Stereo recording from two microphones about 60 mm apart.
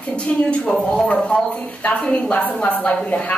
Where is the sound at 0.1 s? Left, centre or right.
Centre.